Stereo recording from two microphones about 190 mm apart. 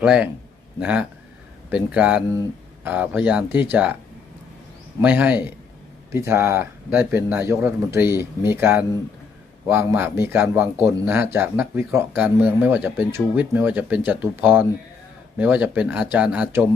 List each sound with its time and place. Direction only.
0.0 s a man's voice: 5° right (ahead or behind)
4.9 s speech: 10° right (ahead or behind)